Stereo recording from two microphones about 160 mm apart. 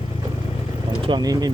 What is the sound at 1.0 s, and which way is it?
Speech, 25° right (ahead or behind).